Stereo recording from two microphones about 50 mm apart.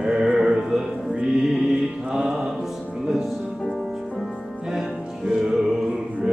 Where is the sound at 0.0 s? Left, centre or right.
Centre.